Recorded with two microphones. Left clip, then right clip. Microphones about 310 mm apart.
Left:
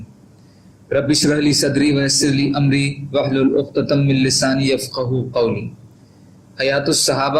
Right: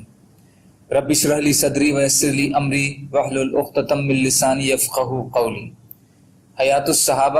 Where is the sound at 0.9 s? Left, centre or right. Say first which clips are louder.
Left 1 dB; centre.